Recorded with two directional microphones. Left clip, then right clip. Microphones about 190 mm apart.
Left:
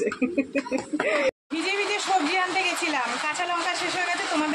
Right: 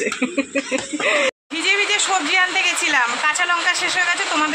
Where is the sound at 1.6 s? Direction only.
5° left (ahead or behind).